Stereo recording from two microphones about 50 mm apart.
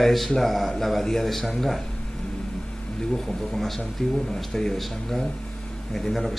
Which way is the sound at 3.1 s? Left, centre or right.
Centre.